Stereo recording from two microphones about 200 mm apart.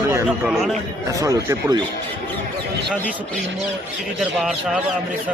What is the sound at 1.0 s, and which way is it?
Speech, 15° right (ahead or behind).